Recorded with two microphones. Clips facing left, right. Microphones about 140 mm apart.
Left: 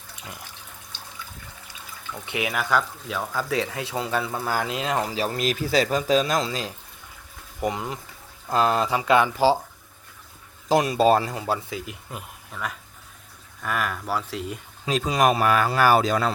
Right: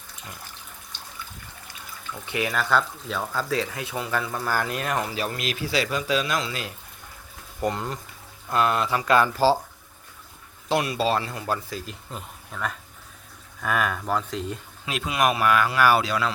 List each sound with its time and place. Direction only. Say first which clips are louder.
2.2 s speech: right 1 dB; 20° left (ahead or behind)
3.5 s speech: left 1 dB; 25° left (ahead or behind)
7.7 s speech: even; 15° left (ahead or behind)
8.4 s speech: left 1 dB; 30° left (ahead or behind)
9.0 s speech: even; 20° left (ahead or behind)
10.7 s speech: left 5 dB; 45° left (ahead or behind)
11.3 s speech: left 2 dB; 25° left (ahead or behind)
11.7 s speech: left 1 dB; 15° left (ahead or behind)
13.6 s speech: right 2 dB; centre (ahead or behind)
14.8 s speech: left 3 dB; 35° left (ahead or behind)